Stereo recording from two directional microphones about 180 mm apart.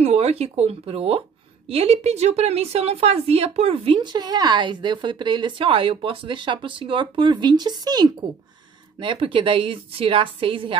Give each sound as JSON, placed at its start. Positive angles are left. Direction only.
{"t": 0.0, "sound": "a woman's voice", "side_deg": -35}